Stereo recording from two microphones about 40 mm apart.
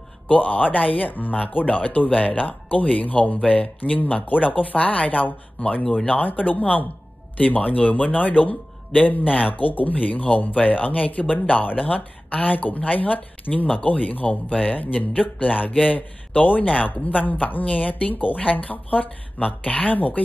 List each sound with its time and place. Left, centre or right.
0.3 s speech: left